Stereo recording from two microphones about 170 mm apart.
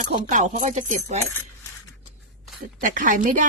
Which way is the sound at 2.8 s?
50° right (ahead or behind).